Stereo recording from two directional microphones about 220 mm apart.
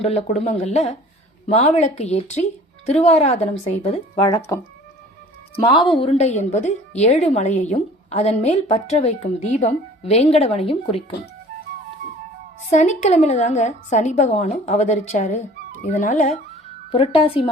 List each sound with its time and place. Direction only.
0.0 s a woman's voice: 25° left (ahead or behind)
4.1 s speech: 15° left (ahead or behind)
5.6 s a woman's voice: 25° left (ahead or behind)
12.7 s a woman's voice: 35° left (ahead or behind)